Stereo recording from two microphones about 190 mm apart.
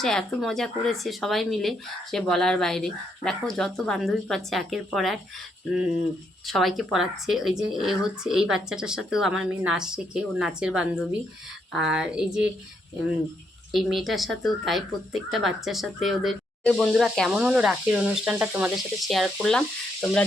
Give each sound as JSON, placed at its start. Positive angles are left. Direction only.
{"t": 0.0, "sound": "speech", "side_deg": 0}
{"t": 6.5, "sound": "speech", "side_deg": 0}
{"t": 13.7, "sound": "speech", "side_deg": 0}